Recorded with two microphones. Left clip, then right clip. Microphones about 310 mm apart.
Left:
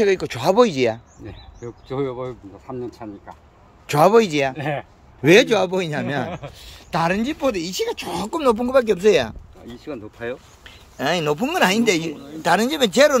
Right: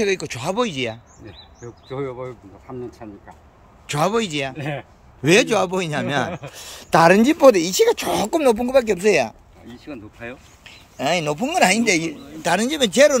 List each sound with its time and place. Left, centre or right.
0.0 s a man's voice: centre
1.2 s speech: left; by 6.5 s centre
6.5 s speech: centre
9.8 s speech: left
10.6 s a man's voice: centre